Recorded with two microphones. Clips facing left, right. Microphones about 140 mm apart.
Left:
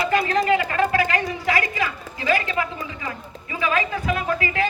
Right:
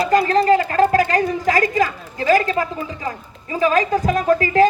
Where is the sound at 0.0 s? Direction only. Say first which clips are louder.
Right 5 dB; 35° right (ahead or behind).